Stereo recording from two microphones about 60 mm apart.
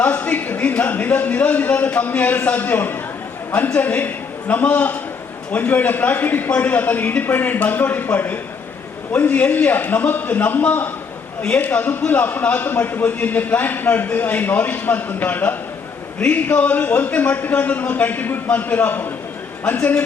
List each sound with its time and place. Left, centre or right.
0.0 s a man's voice: left